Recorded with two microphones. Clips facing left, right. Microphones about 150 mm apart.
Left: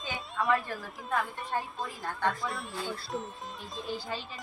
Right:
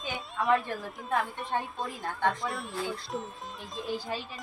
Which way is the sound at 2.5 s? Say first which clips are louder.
Right 2 dB; centre (ahead or behind).